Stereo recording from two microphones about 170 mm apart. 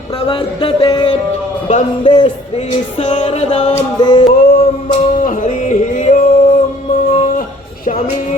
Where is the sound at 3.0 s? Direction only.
45° left (ahead or behind).